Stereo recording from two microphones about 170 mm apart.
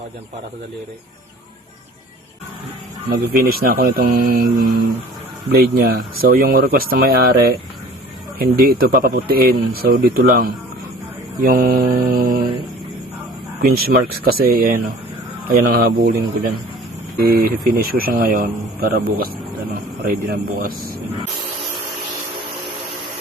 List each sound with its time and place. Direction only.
3.2 s speech: 60° right (ahead or behind)
13.6 s speech: 60° right (ahead or behind)
17.2 s speech: 60° right (ahead or behind)